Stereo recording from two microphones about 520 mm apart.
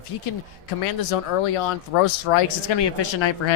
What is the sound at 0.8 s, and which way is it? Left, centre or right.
Speech, left.